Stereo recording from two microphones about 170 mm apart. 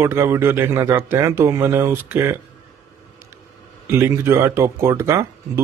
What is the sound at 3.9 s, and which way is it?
Speech, 15° right (ahead or behind).